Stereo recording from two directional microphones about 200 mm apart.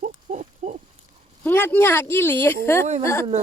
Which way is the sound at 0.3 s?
35° right (ahead or behind).